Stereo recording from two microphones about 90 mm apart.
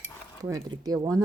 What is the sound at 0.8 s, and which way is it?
Speech, 45° right (ahead or behind).